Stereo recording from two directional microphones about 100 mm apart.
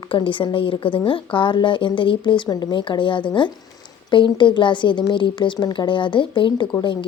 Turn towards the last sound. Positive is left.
turn(degrees=55)  # may be behind; listen again after turning